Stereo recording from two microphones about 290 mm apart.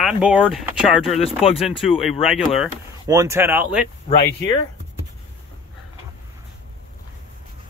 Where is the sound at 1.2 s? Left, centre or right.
Centre.